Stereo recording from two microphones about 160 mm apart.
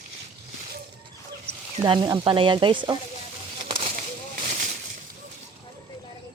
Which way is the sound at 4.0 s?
60° right (ahead or behind).